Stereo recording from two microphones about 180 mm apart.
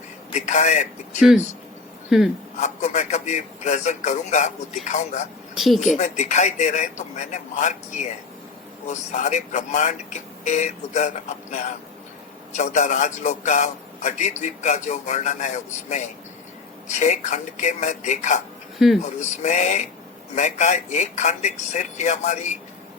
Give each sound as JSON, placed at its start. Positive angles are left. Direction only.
{"t": 0.3, "sound": "a man's voice", "side_deg": 40}
{"t": 2.0, "sound": "speech", "side_deg": 0}
{"t": 2.6, "sound": "speech", "side_deg": 40}
{"t": 5.5, "sound": "speech", "side_deg": 0}
{"t": 5.9, "sound": "a man's voice", "side_deg": 40}